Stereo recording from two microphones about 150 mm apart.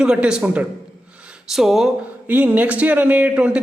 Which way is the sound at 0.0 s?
5° right (ahead or behind).